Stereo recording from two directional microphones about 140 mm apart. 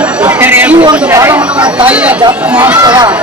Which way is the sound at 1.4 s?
10° right (ahead or behind).